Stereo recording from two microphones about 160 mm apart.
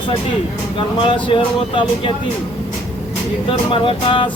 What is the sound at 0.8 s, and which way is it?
Speech, 30° left (ahead or behind).